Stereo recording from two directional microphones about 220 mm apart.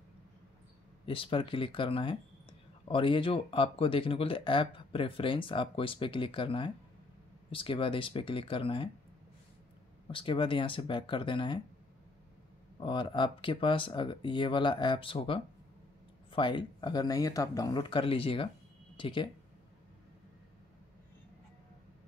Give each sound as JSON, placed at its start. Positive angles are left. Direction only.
{"t": 1.0, "sound": "speech", "side_deg": 25}
{"t": 10.0, "sound": "speech", "side_deg": 20}
{"t": 12.8, "sound": "speech", "side_deg": 20}